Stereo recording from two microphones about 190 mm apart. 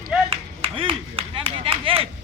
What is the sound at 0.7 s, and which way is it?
Clapping, 30° right (ahead or behind).